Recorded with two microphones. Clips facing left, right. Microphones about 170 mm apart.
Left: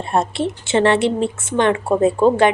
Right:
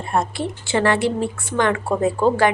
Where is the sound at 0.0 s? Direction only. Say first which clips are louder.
Left 3 dB; 25° left (ahead or behind).